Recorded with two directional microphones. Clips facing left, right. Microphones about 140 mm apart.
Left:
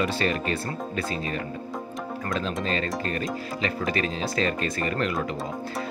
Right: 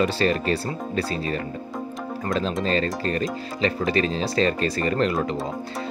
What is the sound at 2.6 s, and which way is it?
Speech, 35° right (ahead or behind).